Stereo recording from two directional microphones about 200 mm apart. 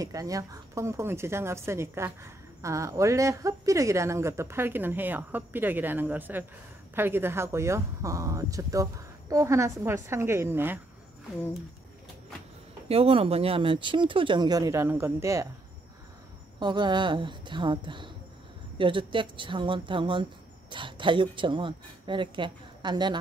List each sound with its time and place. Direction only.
0.0 s speech: 15° right (ahead or behind)
12.8 s speech: 30° right (ahead or behind); by 15.4 s 15° right (ahead or behind)
16.5 s speech: 20° right (ahead or behind)